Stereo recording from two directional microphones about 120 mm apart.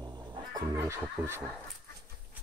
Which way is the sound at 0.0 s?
40° right (ahead or behind).